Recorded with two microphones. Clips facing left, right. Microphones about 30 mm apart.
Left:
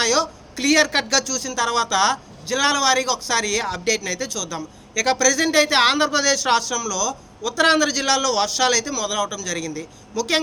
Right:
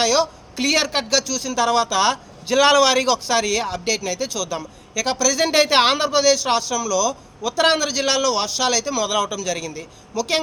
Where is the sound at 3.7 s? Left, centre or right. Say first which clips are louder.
Even; centre.